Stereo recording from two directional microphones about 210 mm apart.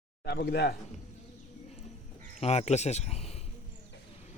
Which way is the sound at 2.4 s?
30° left (ahead or behind).